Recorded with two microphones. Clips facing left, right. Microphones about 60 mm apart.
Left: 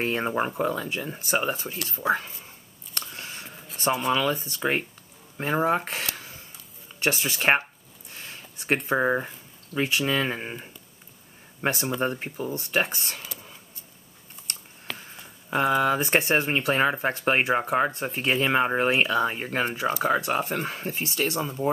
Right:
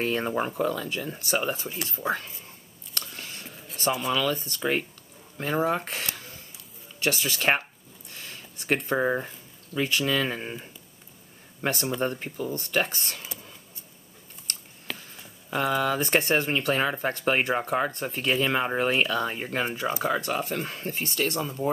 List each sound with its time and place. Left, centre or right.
0.0 s speech: centre
3.0 s a sound: centre
4.1 s speech: centre
5.8 s speech: centre
7.2 s speech: centre
8.1 s a sound: centre
8.7 s speech: centre
11.7 s speech: centre
12.2 s speech: left
12.5 s speech: centre
15.0 s speech: centre
21.0 s speech: centre